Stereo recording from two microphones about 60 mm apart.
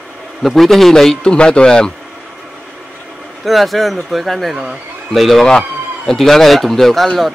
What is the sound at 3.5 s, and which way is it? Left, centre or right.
A man's voice, centre.